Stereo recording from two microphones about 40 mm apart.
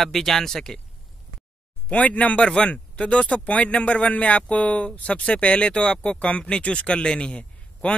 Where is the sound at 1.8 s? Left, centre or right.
Left.